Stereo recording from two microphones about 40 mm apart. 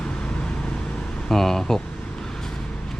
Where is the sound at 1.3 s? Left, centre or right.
Centre.